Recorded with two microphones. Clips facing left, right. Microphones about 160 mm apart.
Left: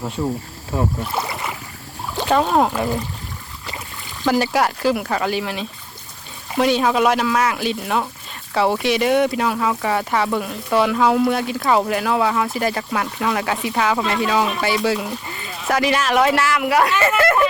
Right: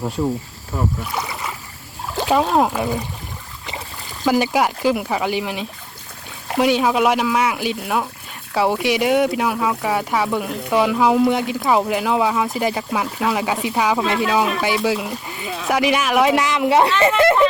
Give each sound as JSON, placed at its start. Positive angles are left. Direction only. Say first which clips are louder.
{"t": 0.7, "sound": "speech", "louder": "left 2 dB", "side_deg": 20}
{"t": 1.2, "sound": "boat", "louder": "left 1 dB", "side_deg": 15}
{"t": 2.1, "sound": "speech", "louder": "even", "side_deg": 0}
{"t": 4.2, "sound": "speech", "louder": "right 1 dB", "side_deg": -10}